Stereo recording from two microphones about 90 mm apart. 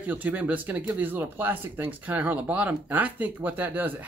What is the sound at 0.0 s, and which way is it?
Speech, 15° right (ahead or behind).